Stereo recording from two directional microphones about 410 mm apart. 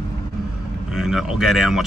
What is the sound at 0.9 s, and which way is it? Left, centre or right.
Speech, centre.